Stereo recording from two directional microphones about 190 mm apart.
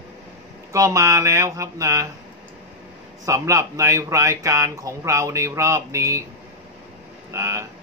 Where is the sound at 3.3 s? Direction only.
15° right (ahead or behind).